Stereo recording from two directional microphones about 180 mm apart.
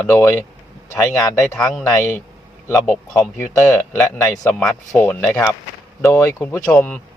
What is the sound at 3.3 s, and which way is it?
A man's voice, 10° left (ahead or behind).